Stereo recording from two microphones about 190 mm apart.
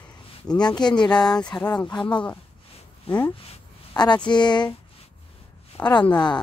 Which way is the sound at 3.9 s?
25° left (ahead or behind).